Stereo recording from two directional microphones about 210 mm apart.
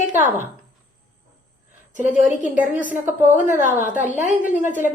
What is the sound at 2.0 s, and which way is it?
A woman's voice, 5° right (ahead or behind).